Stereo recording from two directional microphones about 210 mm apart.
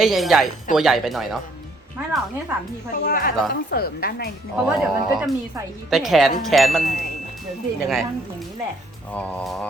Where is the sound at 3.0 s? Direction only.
45° left (ahead or behind).